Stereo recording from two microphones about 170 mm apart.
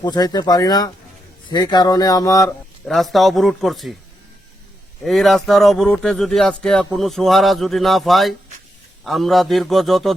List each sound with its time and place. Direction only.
0.0 s speech: 25° left (ahead or behind)
2.8 s speech: centre (ahead or behind)
5.0 s speech: centre (ahead or behind)